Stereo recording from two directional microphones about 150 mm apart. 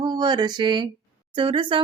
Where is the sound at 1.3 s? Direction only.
35° right (ahead or behind).